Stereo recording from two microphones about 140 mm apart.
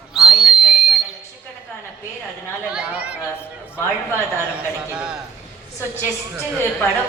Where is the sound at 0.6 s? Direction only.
5° right (ahead or behind).